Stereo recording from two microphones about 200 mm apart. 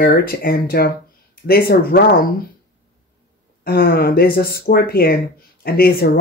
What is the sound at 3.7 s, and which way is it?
Speech, 50° left (ahead or behind).